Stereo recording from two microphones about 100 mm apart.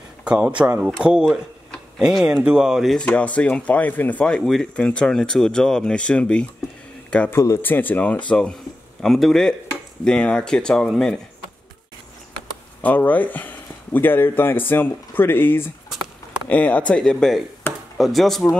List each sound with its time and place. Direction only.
0.2 s speech: 10° right (ahead or behind)
3.0 s speech: 15° left (ahead or behind)
7.2 s speech: 25° left (ahead or behind); by 11.1 s 5° left (ahead or behind)
12.8 s speech: 15° left (ahead or behind)
15.9 s a sound: centre (ahead or behind)
16.4 s speech: 15° left (ahead or behind)